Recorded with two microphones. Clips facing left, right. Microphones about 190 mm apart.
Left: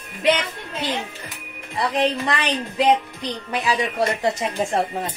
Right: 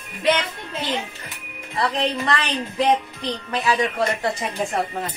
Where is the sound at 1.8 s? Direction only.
15° left (ahead or behind).